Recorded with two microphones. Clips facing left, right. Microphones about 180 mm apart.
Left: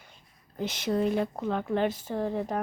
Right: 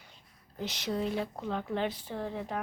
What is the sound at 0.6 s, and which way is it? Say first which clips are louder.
A woman's voice: left 6 dB; 50° left (ahead or behind).